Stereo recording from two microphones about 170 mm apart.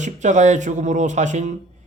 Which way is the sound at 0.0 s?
45° right (ahead or behind).